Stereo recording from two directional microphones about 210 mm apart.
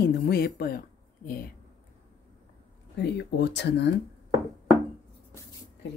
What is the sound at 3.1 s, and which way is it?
Speech, 55° left (ahead or behind).